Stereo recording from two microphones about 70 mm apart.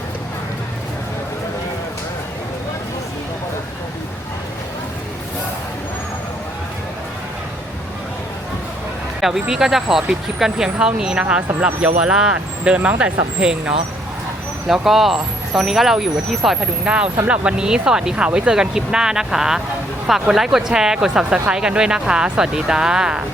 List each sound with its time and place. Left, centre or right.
9.2 s speech: centre
14.7 s speech: centre